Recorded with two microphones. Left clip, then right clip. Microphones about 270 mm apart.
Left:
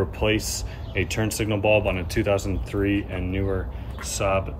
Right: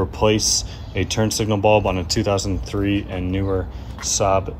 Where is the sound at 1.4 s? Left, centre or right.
Centre.